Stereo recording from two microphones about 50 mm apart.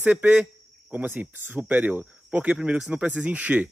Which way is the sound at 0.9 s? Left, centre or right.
Right.